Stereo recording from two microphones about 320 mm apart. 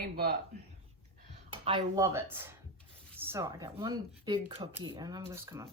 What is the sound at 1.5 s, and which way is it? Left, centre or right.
Speech, centre.